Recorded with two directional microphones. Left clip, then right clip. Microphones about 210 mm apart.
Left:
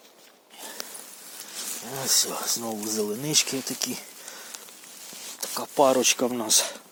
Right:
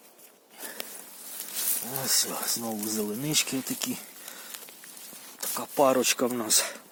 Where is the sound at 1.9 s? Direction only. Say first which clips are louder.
Left 4 dB; 10° left (ahead or behind).